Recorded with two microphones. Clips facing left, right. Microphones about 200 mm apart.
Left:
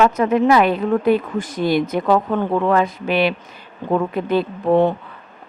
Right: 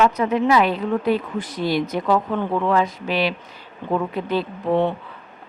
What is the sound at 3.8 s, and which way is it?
Speech, 40° left (ahead or behind).